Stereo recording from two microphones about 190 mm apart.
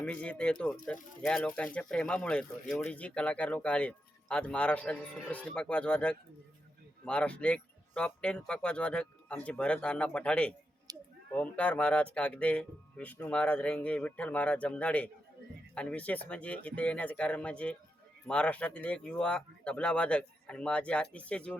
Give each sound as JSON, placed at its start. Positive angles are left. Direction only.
{"t": 0.0, "sound": "speech", "side_deg": 5}
{"t": 10.9, "sound": "a sound", "side_deg": -20}
{"t": 11.3, "sound": "speech", "side_deg": 5}